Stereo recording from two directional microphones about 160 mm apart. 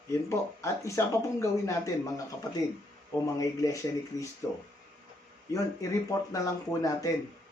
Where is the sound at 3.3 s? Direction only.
20° left (ahead or behind).